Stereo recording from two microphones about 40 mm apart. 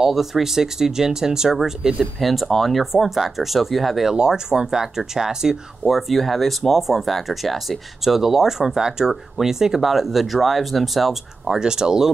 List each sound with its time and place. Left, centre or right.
0.0 s speech: centre
2.1 s speech: centre
4.1 s speech: centre
5.9 s speech: centre
11.6 s speech: centre